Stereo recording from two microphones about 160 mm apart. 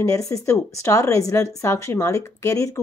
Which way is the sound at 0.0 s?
20° left (ahead or behind).